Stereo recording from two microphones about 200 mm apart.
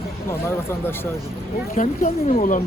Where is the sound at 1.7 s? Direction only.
40° left (ahead or behind).